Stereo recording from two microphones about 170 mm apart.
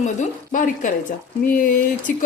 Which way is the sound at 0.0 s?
45° left (ahead or behind).